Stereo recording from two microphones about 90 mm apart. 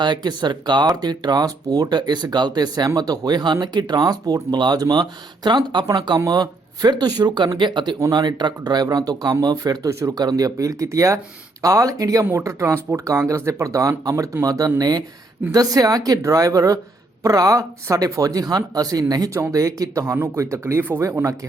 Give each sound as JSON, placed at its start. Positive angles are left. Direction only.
{"t": 0.0, "sound": "speech", "side_deg": -55}
{"t": 6.1, "sound": "speech", "side_deg": -40}